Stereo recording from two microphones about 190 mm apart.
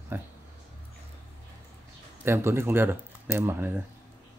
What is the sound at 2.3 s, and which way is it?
Speech, 15° right (ahead or behind).